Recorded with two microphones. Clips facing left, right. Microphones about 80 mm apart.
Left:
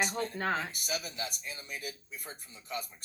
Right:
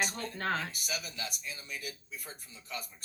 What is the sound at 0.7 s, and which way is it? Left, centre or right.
Speech, left.